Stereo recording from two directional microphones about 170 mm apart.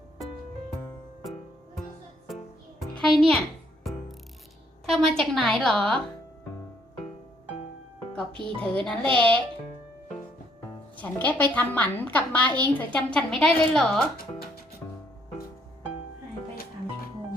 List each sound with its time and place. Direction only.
2.8 s a child's voice: centre (ahead or behind)
4.9 s a woman's voice: centre (ahead or behind)
8.6 s a woman's voice: 5° left (ahead or behind)
10.9 s a woman's voice: 10° left (ahead or behind)
14.2 s music: 65° left (ahead or behind)